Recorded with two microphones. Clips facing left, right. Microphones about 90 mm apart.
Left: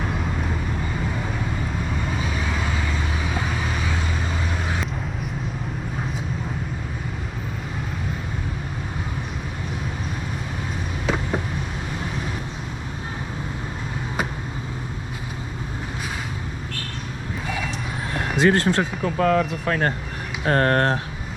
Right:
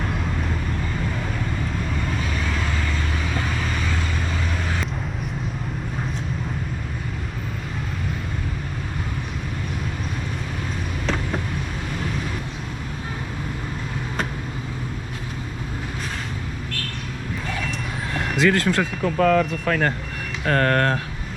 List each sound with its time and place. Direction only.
0.0 s vehicle: 5° left (ahead or behind)
11.0 s a sound: 10° left (ahead or behind)
18.4 s speech: 30° left (ahead or behind)
19.0 s speech: 5° left (ahead or behind)
20.4 s speech: 35° left (ahead or behind)